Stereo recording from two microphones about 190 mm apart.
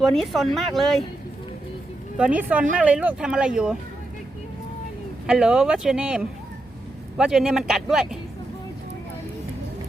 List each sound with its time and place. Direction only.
0.0 s speech: centre (ahead or behind)
2.1 s speech: 5° right (ahead or behind)
5.2 s speech: 5° right (ahead or behind)